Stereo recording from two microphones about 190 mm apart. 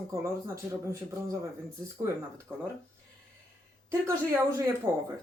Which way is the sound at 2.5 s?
15° right (ahead or behind).